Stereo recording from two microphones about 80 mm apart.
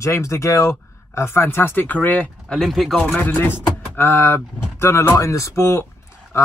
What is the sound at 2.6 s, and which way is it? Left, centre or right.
Speech, centre.